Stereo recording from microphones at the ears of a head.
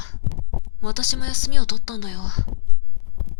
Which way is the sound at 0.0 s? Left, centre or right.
Left.